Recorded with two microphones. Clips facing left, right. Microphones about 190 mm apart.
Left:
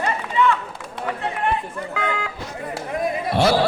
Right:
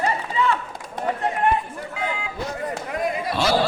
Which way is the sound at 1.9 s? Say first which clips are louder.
Left 3 dB; 70° left (ahead or behind).